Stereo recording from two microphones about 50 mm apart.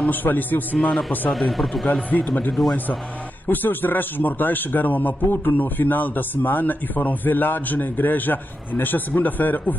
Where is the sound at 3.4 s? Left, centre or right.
Left.